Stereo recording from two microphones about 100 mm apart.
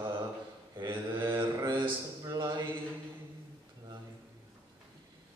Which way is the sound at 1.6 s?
55° right (ahead or behind).